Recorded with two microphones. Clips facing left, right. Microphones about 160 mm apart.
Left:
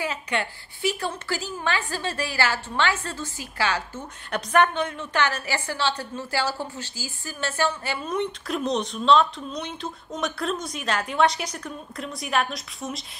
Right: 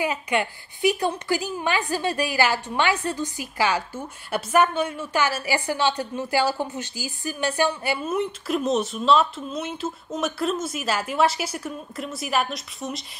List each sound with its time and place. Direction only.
0.0 s a woman's voice: 15° right (ahead or behind)